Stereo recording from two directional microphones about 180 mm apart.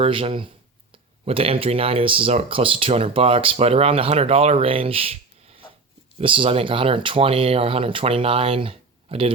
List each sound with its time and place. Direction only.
0.0 s speech: 30° right (ahead or behind)